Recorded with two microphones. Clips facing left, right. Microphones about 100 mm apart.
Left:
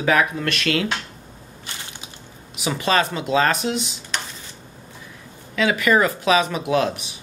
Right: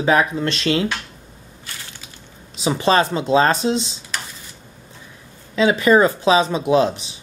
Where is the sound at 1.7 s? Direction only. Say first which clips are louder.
Left 1 dB; 20° left (ahead or behind).